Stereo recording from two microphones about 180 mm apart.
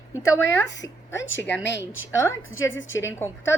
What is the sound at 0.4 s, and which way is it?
A woman's voice, 85° left.